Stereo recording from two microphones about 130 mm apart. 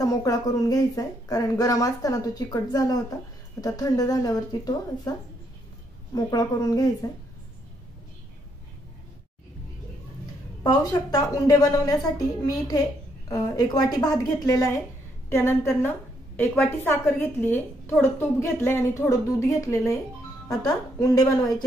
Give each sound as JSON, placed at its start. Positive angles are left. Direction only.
{"t": 0.0, "sound": "a woman's voice", "side_deg": 25}
{"t": 6.1, "sound": "a woman's voice", "side_deg": 30}
{"t": 10.6, "sound": "a woman's voice", "side_deg": 30}